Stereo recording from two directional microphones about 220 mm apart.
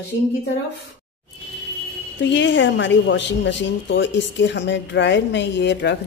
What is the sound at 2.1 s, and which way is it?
A woman's voice, 55° left (ahead or behind).